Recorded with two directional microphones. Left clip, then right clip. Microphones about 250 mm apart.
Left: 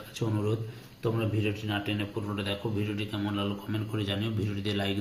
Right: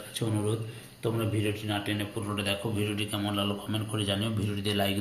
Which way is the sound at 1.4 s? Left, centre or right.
Centre.